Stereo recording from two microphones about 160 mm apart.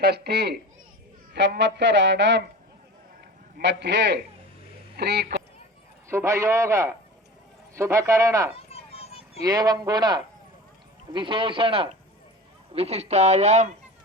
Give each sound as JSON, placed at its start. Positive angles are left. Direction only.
{"t": 0.0, "sound": "speech", "side_deg": -90}
{"t": 3.6, "sound": "speech", "side_deg": -90}
{"t": 6.1, "sound": "a man's voice", "side_deg": -15}
{"t": 8.7, "sound": "a sound", "side_deg": 40}
{"t": 9.4, "sound": "a man's voice", "side_deg": -25}